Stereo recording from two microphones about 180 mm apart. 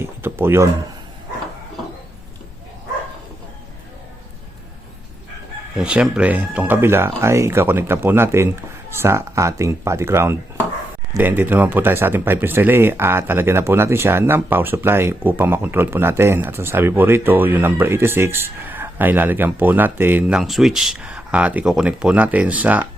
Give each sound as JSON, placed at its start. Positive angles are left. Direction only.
{"t": 0.0, "sound": "speech", "side_deg": -15}
{"t": 5.7, "sound": "speech", "side_deg": -5}